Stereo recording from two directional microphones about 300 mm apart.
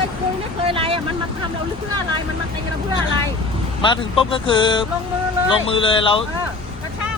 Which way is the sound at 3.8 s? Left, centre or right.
Centre.